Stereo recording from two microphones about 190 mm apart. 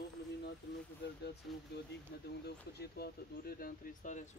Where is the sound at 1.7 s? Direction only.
60° left (ahead or behind).